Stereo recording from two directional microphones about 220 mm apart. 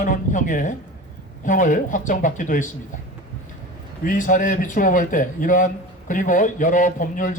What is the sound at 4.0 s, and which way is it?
A man's voice, 35° left (ahead or behind).